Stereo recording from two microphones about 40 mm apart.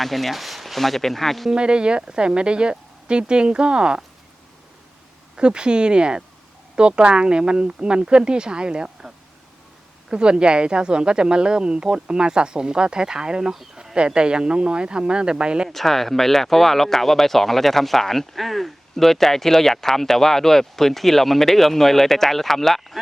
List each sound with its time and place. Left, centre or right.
0.0 s speech: centre
1.5 s speech: right
5.4 s speech: right
15.7 s speech: centre